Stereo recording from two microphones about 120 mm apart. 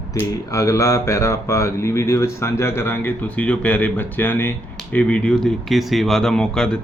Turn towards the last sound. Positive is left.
turn(degrees=5)  # may be behind; listen again after turning